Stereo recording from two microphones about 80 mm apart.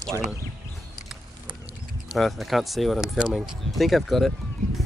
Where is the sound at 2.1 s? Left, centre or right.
Centre.